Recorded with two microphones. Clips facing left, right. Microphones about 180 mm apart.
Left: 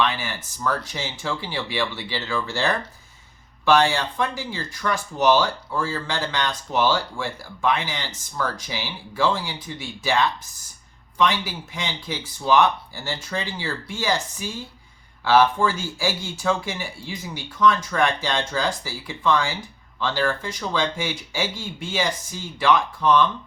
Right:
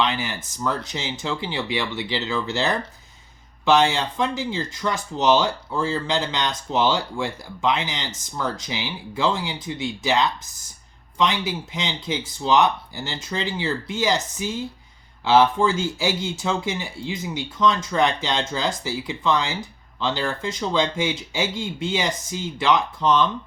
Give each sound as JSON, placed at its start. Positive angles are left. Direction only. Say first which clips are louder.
{"t": 0.0, "sound": "speech", "louder": "even", "side_deg": -20}